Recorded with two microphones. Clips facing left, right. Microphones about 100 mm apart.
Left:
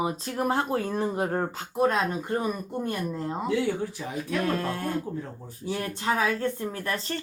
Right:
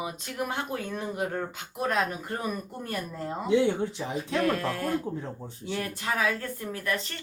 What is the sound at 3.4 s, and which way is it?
Speech, 25° right (ahead or behind).